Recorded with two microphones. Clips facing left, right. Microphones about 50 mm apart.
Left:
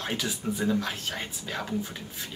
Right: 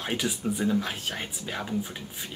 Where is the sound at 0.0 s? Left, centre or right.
Centre.